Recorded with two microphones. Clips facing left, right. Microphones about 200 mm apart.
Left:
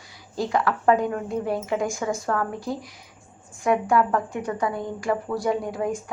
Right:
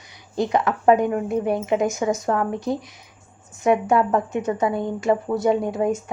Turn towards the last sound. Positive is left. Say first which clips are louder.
# right 5 dB
turn(degrees=-25)  # may be behind; listen again after turning